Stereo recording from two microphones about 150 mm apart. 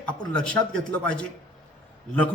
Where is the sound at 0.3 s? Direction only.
5° left (ahead or behind).